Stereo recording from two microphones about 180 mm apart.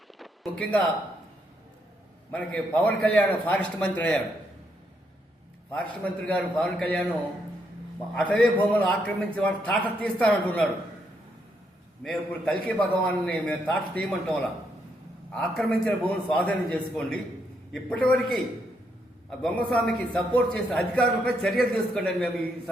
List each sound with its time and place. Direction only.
0.2 s a sound: 5° left (ahead or behind)
2.3 s a man's voice: 5° left (ahead or behind)
5.7 s a man's voice: 5° left (ahead or behind)
8.1 s a man's voice: 5° left (ahead or behind)
12.0 s a man's voice: 5° left (ahead or behind)
15.4 s a man's voice: 5° left (ahead or behind)
19.4 s a man's voice: 5° left (ahead or behind)